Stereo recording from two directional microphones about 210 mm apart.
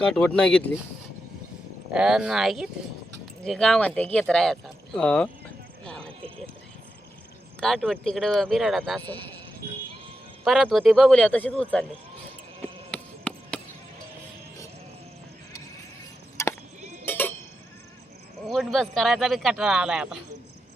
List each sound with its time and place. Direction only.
0.0 s speech: 5° left (ahead or behind)
1.9 s speech: 5° right (ahead or behind)
5.8 s horse: 5° left (ahead or behind)
7.6 s speech: centre (ahead or behind)
9.6 s music: 45° right (ahead or behind)
10.4 s speech: centre (ahead or behind)
12.9 s chop: 5° left (ahead or behind)
16.4 s chop: 15° left (ahead or behind)
17.1 s sheep: 10° left (ahead or behind)
18.4 s speech: centre (ahead or behind)